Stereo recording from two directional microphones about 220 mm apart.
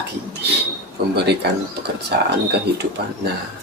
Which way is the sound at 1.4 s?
50° right (ahead or behind).